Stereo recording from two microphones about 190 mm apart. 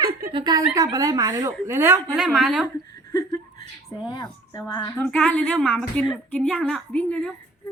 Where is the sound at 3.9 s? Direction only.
20° left (ahead or behind).